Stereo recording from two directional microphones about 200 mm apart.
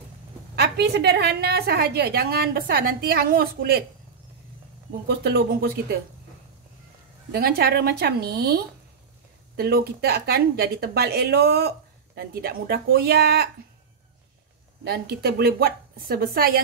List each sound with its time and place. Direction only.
0.6 s a woman's voice: 55° right (ahead or behind)
5.0 s speech: 55° right (ahead or behind)
7.3 s a woman's voice: 50° right (ahead or behind)
9.6 s a woman's voice: 50° right (ahead or behind)
14.9 s a woman's voice: 50° right (ahead or behind)